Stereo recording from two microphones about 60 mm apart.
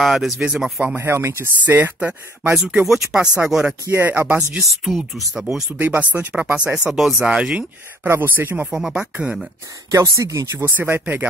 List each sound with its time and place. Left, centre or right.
0.0 s speech: centre
0.4 s speech: centre
0.9 s speech: right
1.6 s speech: right
2.5 s speech: centre
4.0 s speech: right
4.5 s speech: centre
5.7 s speech: right; by 7.6 s centre
8.1 s speech: right
8.6 s speech: centre
9.8 s speech: right
10.4 s speech: right
10.8 s speech: right